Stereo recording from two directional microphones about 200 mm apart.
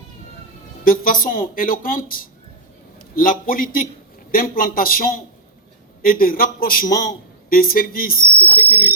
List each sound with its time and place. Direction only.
0.9 s a man's voice: 45° left (ahead or behind)